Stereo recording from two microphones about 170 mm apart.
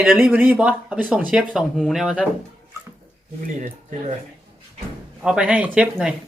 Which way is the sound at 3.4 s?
50° right (ahead or behind).